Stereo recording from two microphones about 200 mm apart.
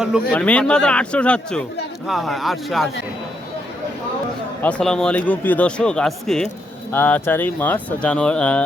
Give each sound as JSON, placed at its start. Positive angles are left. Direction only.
{"t": 0.0, "sound": "speech", "side_deg": -5}
{"t": 4.6, "sound": "speech", "side_deg": 5}